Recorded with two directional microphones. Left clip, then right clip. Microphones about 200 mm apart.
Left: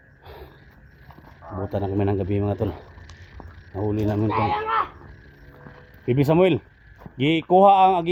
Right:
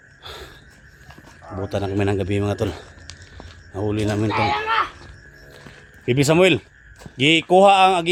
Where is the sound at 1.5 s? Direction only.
15° right (ahead or behind).